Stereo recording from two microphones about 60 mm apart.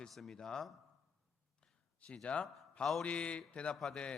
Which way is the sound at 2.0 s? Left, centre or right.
Centre.